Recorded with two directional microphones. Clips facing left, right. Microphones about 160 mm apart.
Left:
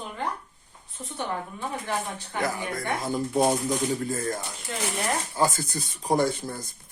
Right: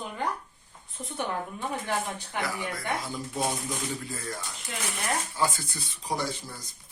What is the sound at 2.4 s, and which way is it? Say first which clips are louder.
Speech: left 5 dB; 50° left (ahead or behind).